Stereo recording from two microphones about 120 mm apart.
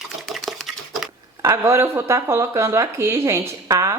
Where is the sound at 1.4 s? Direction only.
25° right (ahead or behind).